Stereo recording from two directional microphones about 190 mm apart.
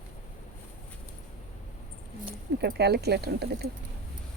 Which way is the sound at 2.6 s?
60° right (ahead or behind).